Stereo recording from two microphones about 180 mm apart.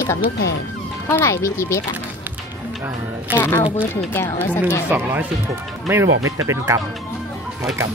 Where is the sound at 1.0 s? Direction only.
15° left (ahead or behind).